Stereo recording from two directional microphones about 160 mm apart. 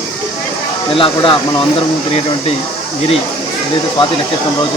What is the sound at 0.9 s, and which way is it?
Speech, 35° left (ahead or behind).